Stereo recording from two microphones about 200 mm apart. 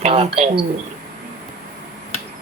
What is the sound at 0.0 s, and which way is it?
Speech, 30° right (ahead or behind).